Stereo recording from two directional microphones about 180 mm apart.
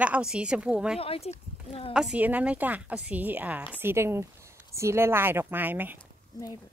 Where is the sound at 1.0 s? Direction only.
35° left (ahead or behind).